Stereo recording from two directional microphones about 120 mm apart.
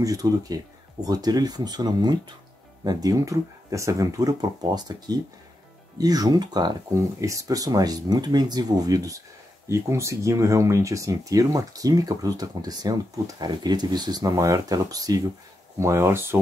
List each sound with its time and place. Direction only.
0.0 s speech: 30° right (ahead or behind)